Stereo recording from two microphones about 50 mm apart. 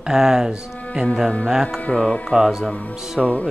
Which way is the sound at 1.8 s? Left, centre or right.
Left.